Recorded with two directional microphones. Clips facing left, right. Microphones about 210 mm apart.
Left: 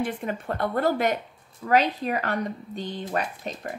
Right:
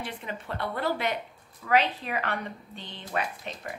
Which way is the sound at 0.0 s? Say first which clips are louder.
Left 8 dB; 50° left (ahead or behind).